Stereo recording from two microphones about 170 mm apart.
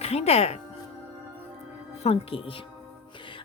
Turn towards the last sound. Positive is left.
turn(degrees=30)  # may be behind; listen again after turning